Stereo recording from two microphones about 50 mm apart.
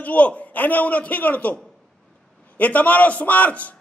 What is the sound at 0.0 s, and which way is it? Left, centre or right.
A man's voice, left.